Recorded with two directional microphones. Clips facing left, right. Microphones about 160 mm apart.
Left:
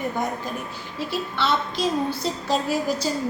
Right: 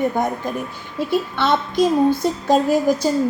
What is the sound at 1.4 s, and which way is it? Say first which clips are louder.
A woman's voice: right 5 dB; 50° right (ahead or behind).